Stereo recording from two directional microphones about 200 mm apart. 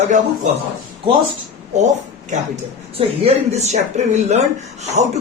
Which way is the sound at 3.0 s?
30° right (ahead or behind).